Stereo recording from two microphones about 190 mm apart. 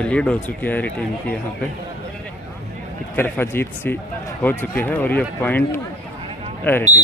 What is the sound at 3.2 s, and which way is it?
Speech, 10° left (ahead or behind).